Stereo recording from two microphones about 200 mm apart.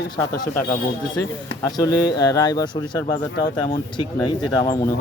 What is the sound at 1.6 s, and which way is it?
Speech, 15° left (ahead or behind).